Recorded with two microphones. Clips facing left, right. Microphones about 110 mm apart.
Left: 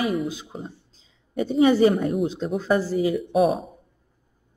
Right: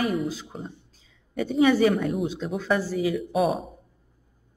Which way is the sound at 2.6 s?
35° left (ahead or behind).